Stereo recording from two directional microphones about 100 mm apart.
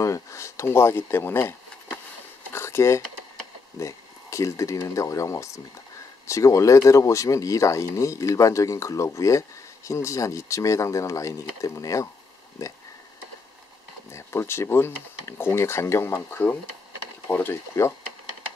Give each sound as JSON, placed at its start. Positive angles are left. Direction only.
{"t": 0.0, "sound": "speech", "side_deg": 30}
{"t": 2.5, "sound": "a sound", "side_deg": 25}
{"t": 3.8, "sound": "speech", "side_deg": 30}
{"t": 14.1, "sound": "speech", "side_deg": 25}